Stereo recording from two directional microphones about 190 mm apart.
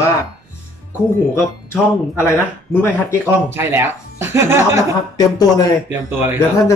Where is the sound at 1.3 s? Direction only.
15° left (ahead or behind).